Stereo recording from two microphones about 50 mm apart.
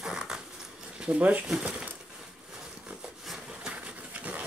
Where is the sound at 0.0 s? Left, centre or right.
Centre.